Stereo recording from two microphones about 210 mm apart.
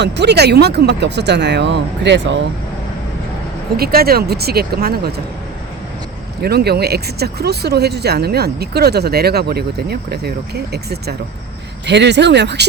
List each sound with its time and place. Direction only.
0.0 s speech: 55° right (ahead or behind)
3.8 s speech: 45° right (ahead or behind)
6.4 s speech: 50° right (ahead or behind)